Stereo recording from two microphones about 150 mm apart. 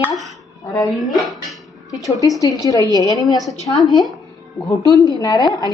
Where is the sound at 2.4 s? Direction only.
20° left (ahead or behind).